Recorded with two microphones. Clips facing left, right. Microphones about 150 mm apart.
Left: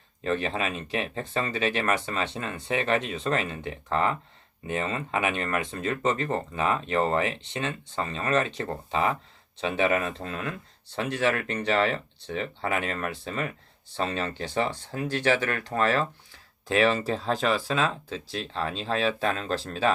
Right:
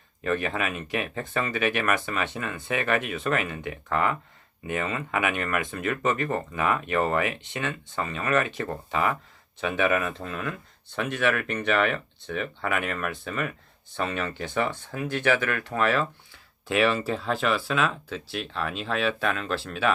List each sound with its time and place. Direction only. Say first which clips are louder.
0.2 s speech: even; 25° left (ahead or behind)